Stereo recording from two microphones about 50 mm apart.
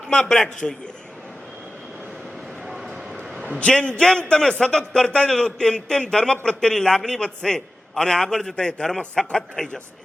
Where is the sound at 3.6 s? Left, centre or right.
Centre.